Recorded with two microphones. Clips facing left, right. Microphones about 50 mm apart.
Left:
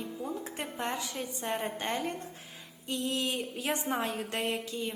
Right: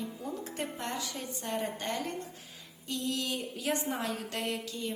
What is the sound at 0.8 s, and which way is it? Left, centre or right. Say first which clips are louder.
A woman's voice: left 2 dB; left.